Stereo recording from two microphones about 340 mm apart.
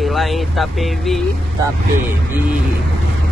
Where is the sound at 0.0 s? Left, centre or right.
Centre.